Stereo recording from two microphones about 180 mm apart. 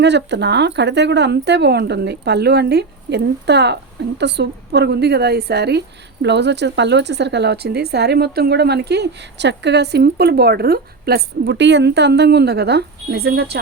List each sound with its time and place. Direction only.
0.0 s speech: 70° right (ahead or behind)